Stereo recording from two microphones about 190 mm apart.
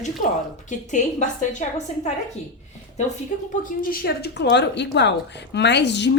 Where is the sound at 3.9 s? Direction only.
55° left (ahead or behind).